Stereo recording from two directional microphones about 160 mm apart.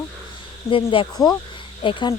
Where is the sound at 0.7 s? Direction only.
35° left (ahead or behind).